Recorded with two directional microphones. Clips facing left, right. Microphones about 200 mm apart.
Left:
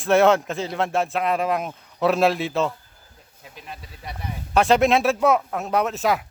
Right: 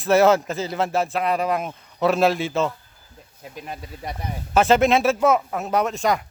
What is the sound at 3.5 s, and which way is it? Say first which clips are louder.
Speech: right 5 dB; 45° right (ahead or behind).